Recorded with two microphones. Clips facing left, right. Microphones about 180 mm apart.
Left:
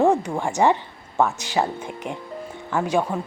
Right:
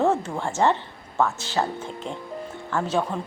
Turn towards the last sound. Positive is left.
turn(degrees=10)  # may be behind; listen again after turning